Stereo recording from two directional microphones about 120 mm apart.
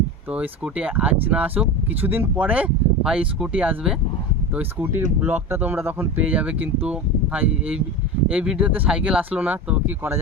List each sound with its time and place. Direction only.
0.3 s speech: 10° right (ahead or behind)